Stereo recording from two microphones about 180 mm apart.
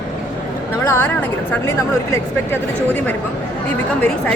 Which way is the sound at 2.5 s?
10° left (ahead or behind).